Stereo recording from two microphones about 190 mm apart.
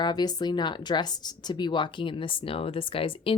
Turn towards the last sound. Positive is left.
turn(degrees=30)  # may be behind; listen again after turning